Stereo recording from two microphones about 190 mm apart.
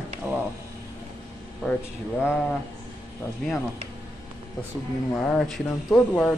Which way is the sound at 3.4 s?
5° left (ahead or behind).